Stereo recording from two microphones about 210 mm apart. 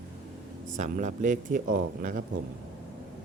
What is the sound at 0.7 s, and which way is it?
Speech, 35° right (ahead or behind).